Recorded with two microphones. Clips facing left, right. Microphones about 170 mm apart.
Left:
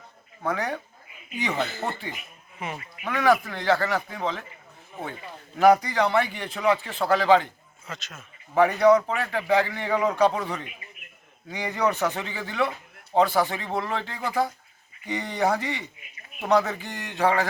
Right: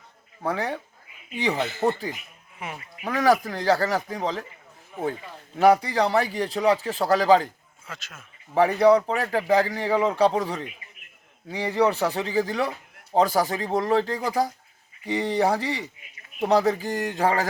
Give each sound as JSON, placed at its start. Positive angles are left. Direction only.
{"t": 0.4, "sound": "speech", "side_deg": -30}
{"t": 2.6, "sound": "speech", "side_deg": -10}
{"t": 3.0, "sound": "speech", "side_deg": -35}
{"t": 5.5, "sound": "speech", "side_deg": -30}
{"t": 7.9, "sound": "speech", "side_deg": -10}
{"t": 8.5, "sound": "speech", "side_deg": -30}